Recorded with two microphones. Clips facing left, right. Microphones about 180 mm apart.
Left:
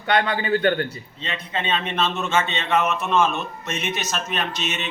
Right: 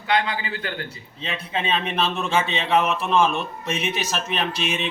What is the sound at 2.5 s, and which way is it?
Speech, 30° right (ahead or behind).